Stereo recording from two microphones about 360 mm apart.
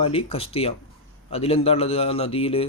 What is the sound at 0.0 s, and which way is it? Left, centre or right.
A man's voice, centre.